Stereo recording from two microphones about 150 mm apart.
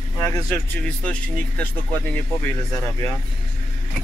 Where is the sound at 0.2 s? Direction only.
20° left (ahead or behind).